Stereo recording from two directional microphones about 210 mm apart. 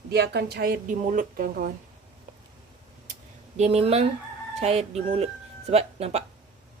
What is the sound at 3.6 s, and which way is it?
A woman's voice, 30° right (ahead or behind).